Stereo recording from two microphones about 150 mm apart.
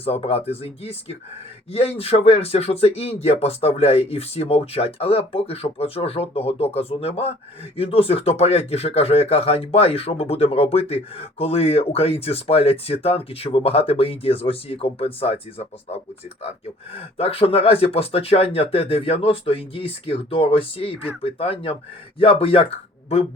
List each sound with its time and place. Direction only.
0.0 s speech: 40° left (ahead or behind)